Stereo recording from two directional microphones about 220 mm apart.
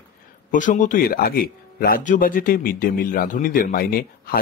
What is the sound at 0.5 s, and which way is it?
Speech, 35° left (ahead or behind).